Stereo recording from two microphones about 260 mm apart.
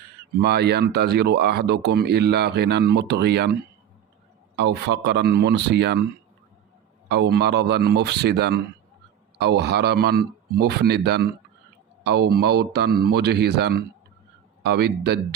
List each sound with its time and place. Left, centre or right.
0.4 s speech: right
7.1 s speech: right